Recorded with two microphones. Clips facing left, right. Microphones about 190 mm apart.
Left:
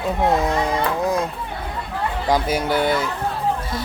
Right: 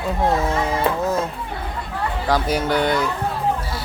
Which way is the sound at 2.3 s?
10° left (ahead or behind).